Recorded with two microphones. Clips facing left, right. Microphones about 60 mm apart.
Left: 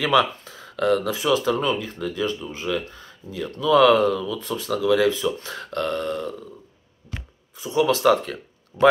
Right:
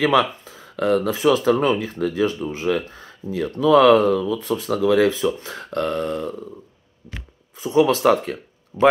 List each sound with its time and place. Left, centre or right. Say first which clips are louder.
0.7 s speech: right 2 dB; right
5.4 s a sound: right 2 dB; right
7.5 s speech: right 4 dB; right
8.7 s speech: right 1 dB; centre